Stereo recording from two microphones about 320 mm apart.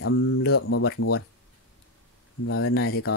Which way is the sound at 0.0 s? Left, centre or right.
Left.